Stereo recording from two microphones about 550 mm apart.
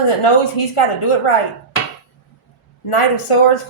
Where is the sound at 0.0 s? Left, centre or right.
Left.